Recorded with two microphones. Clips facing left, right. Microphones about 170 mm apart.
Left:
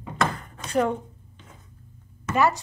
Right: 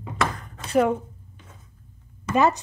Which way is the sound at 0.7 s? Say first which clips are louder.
Right 3 dB; 5° right (ahead or behind).